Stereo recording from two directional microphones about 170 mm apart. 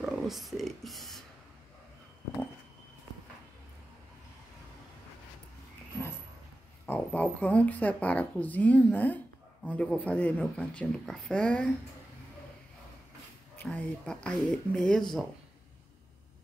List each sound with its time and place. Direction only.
0.0 s speech: centre (ahead or behind)
6.9 s a woman's voice: 10° left (ahead or behind)
13.6 s speech: 5° left (ahead or behind)